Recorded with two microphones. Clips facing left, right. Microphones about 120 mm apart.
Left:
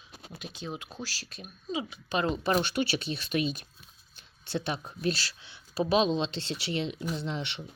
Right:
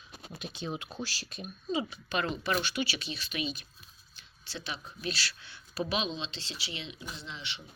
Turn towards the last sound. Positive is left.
turn(degrees=55)  # may be behind; listen again after turning